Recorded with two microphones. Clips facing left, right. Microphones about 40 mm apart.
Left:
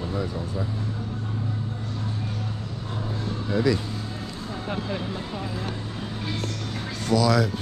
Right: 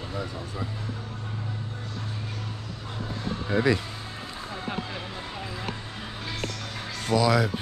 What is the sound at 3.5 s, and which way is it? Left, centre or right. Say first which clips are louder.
Speech: even; right.